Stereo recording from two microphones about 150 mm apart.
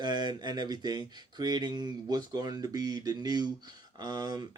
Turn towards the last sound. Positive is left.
turn(degrees=-25)  # may be behind; listen again after turning